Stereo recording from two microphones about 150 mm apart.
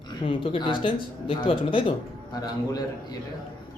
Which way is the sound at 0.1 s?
35° left (ahead or behind).